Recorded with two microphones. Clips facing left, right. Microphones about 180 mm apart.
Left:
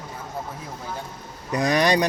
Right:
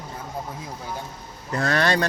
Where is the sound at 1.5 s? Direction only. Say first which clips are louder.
Left 2 dB; 15° left (ahead or behind).